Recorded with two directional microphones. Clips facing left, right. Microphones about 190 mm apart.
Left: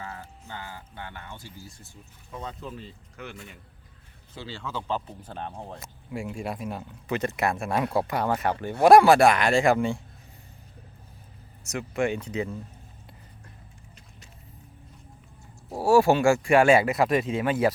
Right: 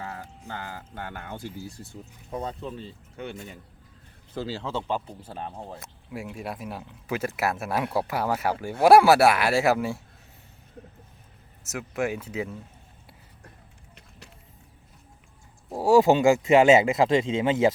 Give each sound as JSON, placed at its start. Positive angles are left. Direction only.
{"t": 0.0, "sound": "speech", "side_deg": -40}
{"t": 2.3, "sound": "speech", "side_deg": -35}
{"t": 5.2, "sound": "speech", "side_deg": -5}
{"t": 11.6, "sound": "speech", "side_deg": -5}
{"t": 15.7, "sound": "speech", "side_deg": -15}